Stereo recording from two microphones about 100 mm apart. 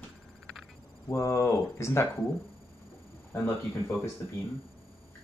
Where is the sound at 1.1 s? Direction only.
30° left (ahead or behind).